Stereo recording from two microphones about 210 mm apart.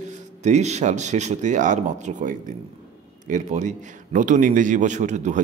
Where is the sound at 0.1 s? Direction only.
35° right (ahead or behind).